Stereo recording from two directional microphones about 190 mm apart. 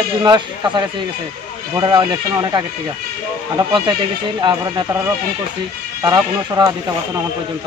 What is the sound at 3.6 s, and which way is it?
Speech, 25° right (ahead or behind).